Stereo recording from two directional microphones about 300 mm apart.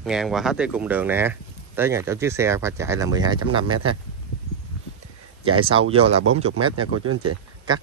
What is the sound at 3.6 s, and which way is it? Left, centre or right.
Speech, right.